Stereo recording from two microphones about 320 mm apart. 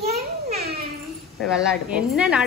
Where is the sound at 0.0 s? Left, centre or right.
Centre.